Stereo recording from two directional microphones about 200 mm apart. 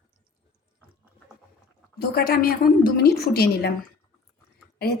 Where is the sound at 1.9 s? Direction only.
50° left (ahead or behind).